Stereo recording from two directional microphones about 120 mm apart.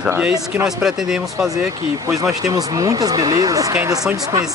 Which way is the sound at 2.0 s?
30° right (ahead or behind).